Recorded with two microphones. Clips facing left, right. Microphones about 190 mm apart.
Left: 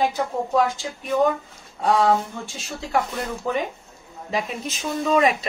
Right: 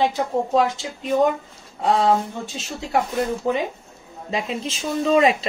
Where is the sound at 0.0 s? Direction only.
25° right (ahead or behind).